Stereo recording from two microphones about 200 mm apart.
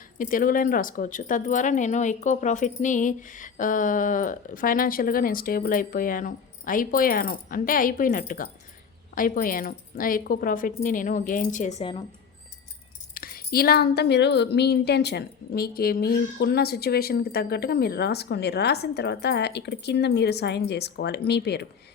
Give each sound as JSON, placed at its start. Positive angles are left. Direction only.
{"t": 0.2, "sound": "speech", "side_deg": 45}
{"t": 13.1, "sound": "speech", "side_deg": 45}